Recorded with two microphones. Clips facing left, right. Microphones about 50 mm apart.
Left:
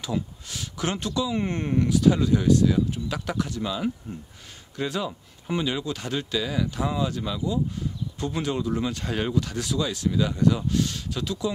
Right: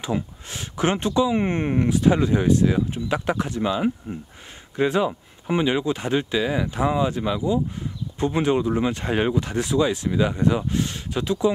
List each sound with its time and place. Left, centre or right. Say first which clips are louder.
0.0 s speech: right 3 dB; right